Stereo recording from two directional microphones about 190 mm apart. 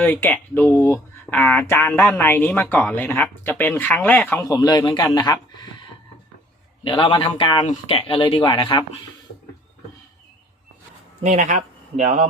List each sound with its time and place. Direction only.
0.0 s speech: 10° left (ahead or behind)
6.8 s speech: 30° left (ahead or behind)
11.2 s speech: 40° right (ahead or behind)